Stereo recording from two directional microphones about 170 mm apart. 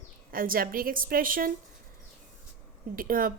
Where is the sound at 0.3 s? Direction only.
55° right (ahead or behind).